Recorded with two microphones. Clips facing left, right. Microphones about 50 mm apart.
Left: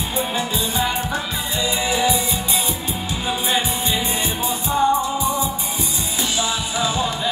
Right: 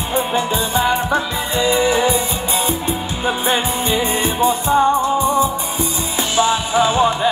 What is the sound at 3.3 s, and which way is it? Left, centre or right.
Music, right.